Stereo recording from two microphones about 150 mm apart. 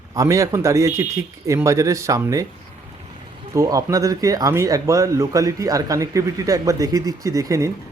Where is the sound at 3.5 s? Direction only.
20° right (ahead or behind).